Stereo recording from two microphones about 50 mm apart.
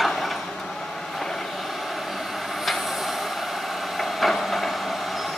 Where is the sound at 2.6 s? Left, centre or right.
Centre.